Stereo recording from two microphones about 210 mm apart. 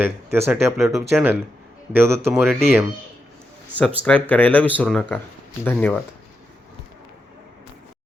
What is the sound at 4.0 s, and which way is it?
Speech, 5° left (ahead or behind).